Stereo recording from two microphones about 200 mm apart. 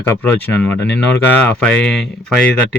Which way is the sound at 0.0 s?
10° left (ahead or behind).